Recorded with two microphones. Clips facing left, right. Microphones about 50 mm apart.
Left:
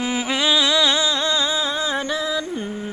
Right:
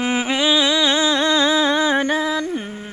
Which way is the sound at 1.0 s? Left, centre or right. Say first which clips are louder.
Right 4 dB; right.